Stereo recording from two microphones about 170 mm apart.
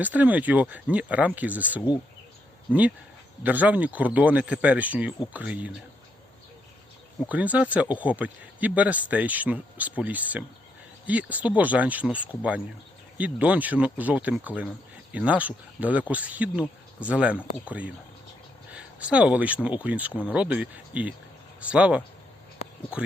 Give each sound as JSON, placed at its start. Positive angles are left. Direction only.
{"t": 0.0, "sound": "speech", "side_deg": -10}
{"t": 3.4, "sound": "speech", "side_deg": -10}
{"t": 7.3, "sound": "speech", "side_deg": -10}
{"t": 22.6, "sound": "a sound", "side_deg": 40}